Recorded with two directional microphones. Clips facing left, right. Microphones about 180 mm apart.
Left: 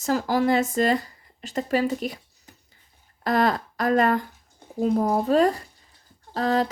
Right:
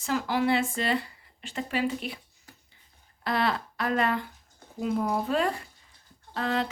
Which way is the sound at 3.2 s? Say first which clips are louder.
Left 6 dB; 45° left (ahead or behind).